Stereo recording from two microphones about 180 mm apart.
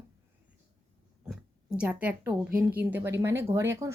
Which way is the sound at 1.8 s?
10° right (ahead or behind).